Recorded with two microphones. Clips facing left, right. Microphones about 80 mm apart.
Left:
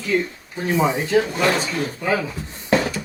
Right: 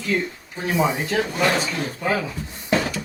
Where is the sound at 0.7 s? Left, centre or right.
Centre.